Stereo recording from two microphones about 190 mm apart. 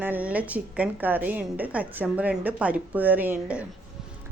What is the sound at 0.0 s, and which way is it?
A woman's voice, 10° right (ahead or behind).